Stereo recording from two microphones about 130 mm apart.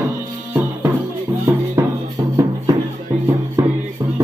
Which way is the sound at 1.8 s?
30° right (ahead or behind).